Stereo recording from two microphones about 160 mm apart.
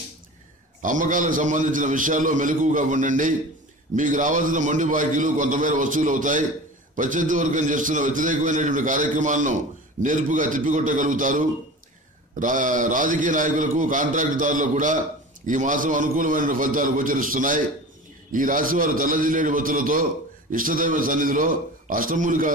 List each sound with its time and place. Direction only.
0.8 s a man's voice: 55° right (ahead or behind)